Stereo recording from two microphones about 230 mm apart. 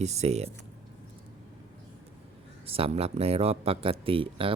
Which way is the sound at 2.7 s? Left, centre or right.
Right.